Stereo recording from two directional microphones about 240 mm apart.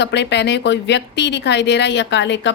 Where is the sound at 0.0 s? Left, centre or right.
Left.